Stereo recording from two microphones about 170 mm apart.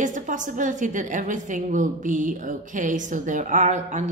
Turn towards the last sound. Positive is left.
turn(degrees=-45)  # may be behind; listen again after turning